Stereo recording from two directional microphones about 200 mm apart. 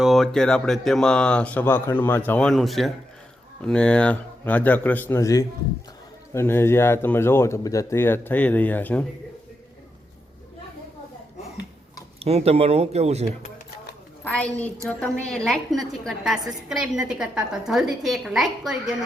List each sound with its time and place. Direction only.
0.0 s speech: centre (ahead or behind)
12.2 s speech: 30° right (ahead or behind)
14.3 s a woman's voice: 5° left (ahead or behind)